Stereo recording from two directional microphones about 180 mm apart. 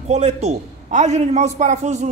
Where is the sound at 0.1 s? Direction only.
40° right (ahead or behind).